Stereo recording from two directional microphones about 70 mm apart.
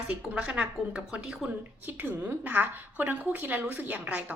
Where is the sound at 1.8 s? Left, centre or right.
Right.